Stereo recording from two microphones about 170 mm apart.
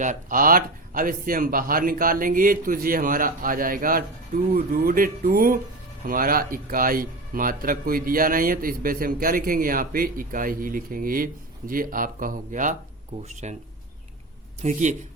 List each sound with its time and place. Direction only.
0.0 s speech: 50° right (ahead or behind)
14.6 s a man's voice: 45° right (ahead or behind)